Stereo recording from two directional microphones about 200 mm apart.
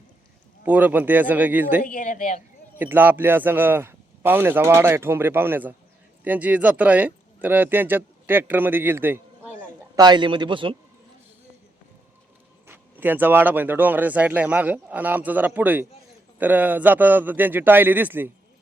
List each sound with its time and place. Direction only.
0.6 s speech: 10° right (ahead or behind)
1.8 s speech: 40° left (ahead or behind)
2.7 s speech: 10° right (ahead or behind)
9.9 s a man's voice: 20° right (ahead or behind)
12.6 s speech: 10° right (ahead or behind)